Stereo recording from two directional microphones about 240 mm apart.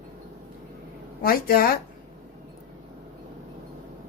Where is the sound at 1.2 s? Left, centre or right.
Left.